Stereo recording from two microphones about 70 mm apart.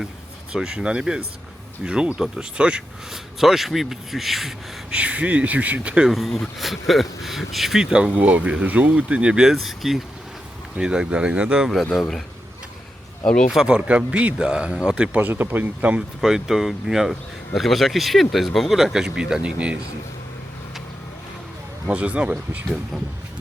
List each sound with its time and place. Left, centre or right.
0.5 s speech: centre
4.9 s speech: centre
6.1 s speech: centre
10.8 s speech: centre
11.9 s speech: centre
13.5 s speech: centre
15.2 s speech: right
16.2 s speech: centre
21.8 s speech: centre